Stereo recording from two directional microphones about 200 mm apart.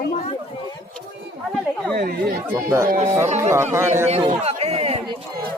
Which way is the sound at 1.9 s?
50° right (ahead or behind).